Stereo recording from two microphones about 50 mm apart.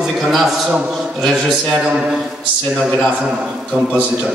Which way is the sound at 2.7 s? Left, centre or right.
Centre.